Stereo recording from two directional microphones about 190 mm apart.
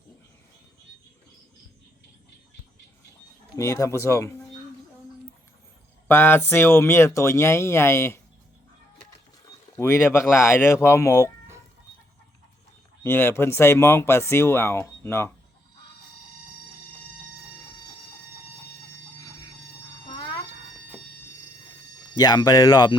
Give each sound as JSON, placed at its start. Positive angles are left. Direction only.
{"t": 3.6, "sound": "speech", "side_deg": 15}
{"t": 6.1, "sound": "speech", "side_deg": 10}
{"t": 9.5, "sound": "speech", "side_deg": 15}
{"t": 13.0, "sound": "speech", "side_deg": 10}
{"t": 22.2, "sound": "speech", "side_deg": 20}